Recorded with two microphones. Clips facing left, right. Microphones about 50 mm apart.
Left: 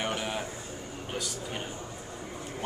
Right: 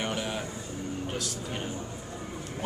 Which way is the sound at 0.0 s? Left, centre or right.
Centre.